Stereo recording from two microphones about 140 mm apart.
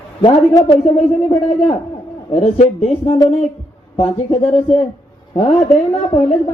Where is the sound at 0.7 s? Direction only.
50° left (ahead or behind).